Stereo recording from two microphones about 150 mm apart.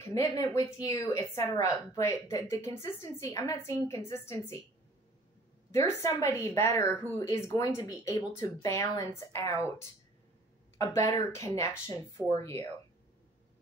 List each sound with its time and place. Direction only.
0.0 s speech: 20° left (ahead or behind)
5.7 s speech: 20° left (ahead or behind)
10.8 s speech: 20° left (ahead or behind)